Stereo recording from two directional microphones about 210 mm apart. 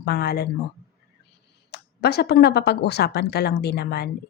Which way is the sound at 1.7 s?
50° left (ahead or behind).